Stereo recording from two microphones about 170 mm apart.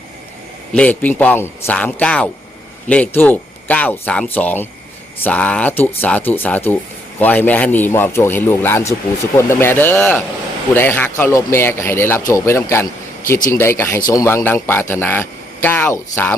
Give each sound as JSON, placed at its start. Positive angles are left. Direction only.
{"t": 0.8, "sound": "speech", "side_deg": 10}